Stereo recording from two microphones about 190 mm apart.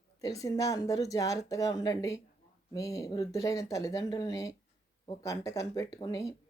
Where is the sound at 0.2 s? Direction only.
20° left (ahead or behind).